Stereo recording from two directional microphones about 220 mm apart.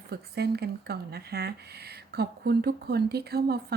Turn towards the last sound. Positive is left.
turn(degrees=-45)  # may be behind; listen again after turning